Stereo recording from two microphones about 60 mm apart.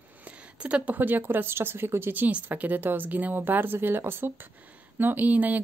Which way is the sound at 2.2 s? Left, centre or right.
Right.